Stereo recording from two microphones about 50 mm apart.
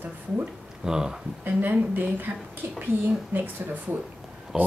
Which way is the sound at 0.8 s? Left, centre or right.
Centre.